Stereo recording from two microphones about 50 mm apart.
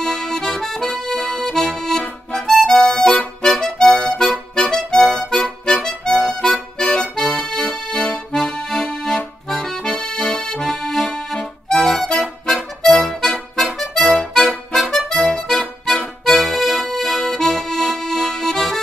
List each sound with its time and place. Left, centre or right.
0.0 s accordion: centre
2.5 s music: centre
6.5 s music: left
7.0 s accordion: centre
11.2 s music: centre
16.4 s accordion: centre